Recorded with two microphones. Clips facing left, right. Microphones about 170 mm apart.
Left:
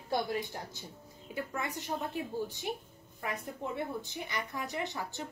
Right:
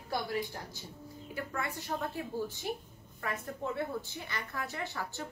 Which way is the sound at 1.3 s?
20° left (ahead or behind).